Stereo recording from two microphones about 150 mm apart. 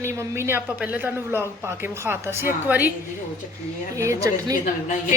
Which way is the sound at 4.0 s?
20° right (ahead or behind).